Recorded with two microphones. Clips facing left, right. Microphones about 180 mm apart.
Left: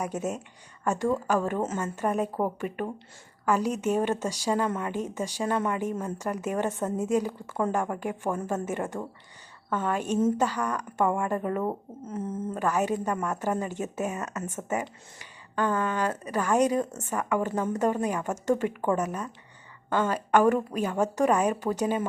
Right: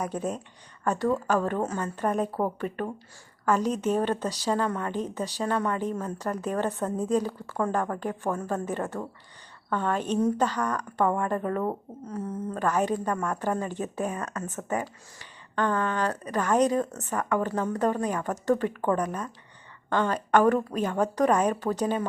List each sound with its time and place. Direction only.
0.0 s speech: 10° left (ahead or behind)
12.0 s speech: 20° left (ahead or behind)
12.5 s speech: 10° left (ahead or behind)